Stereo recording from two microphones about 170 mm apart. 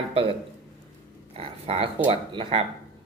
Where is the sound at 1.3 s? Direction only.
35° right (ahead or behind).